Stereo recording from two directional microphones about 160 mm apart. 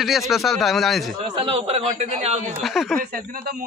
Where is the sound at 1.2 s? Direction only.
35° right (ahead or behind).